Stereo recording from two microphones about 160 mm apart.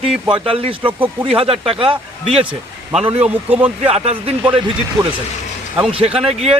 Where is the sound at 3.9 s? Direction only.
40° right (ahead or behind).